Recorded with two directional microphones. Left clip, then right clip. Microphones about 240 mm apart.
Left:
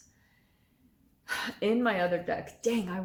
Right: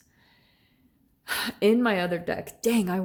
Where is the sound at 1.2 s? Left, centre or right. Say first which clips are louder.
Right 7 dB; right.